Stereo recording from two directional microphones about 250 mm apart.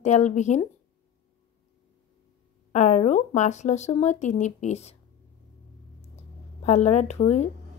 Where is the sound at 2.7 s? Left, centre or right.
Left.